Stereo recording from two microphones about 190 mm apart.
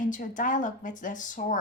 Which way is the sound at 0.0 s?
45° left (ahead or behind).